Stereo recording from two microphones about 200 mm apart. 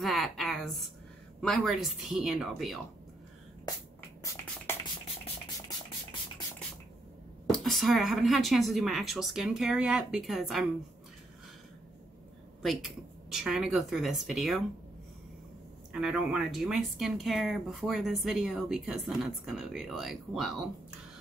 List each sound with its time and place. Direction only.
0.0 s a sound: centre (ahead or behind)
1.4 s speech: centre (ahead or behind)
4.2 s a sound: 15° left (ahead or behind)
7.5 s speech: centre (ahead or behind)
12.6 s speech: centre (ahead or behind)
15.9 s speech: 5° right (ahead or behind)